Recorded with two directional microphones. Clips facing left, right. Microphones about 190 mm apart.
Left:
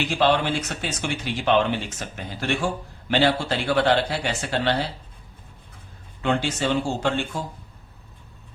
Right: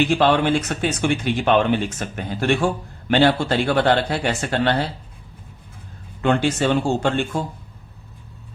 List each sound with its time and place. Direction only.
0.1 s speech: 55° right (ahead or behind)
6.2 s speech: 55° right (ahead or behind)